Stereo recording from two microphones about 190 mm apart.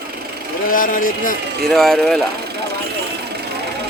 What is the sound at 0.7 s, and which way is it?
Speech, 45° left (ahead or behind).